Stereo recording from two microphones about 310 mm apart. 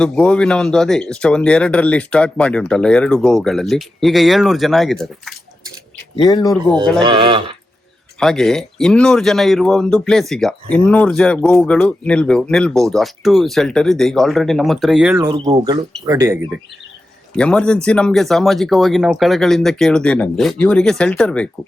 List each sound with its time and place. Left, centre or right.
0.0 s speech: centre
6.2 s speech: centre
7.0 s speech: centre
8.2 s speech: centre
15.4 s speech: centre
17.3 s speech: centre